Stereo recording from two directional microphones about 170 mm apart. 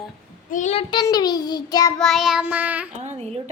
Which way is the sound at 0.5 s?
40° left (ahead or behind).